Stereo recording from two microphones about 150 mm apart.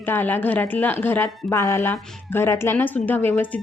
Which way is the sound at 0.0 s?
15° left (ahead or behind).